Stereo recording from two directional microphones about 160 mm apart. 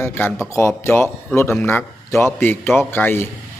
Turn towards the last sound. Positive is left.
turn(degrees=15)  # may be behind; listen again after turning